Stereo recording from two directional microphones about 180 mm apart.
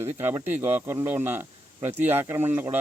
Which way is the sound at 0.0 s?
15° right (ahead or behind).